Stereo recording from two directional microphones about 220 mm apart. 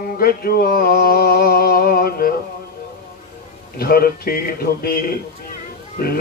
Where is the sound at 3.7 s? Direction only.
45° left (ahead or behind).